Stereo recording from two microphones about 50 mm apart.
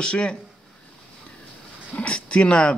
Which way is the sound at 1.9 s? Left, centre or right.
Left.